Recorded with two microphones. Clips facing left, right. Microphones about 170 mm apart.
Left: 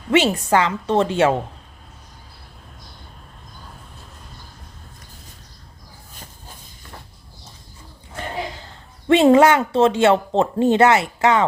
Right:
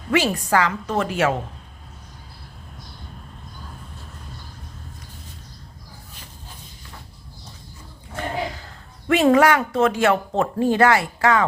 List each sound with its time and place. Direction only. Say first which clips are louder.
0.1 s speech: left 3 dB; 25° left (ahead or behind)
9.0 s speech: left 3 dB; 25° left (ahead or behind)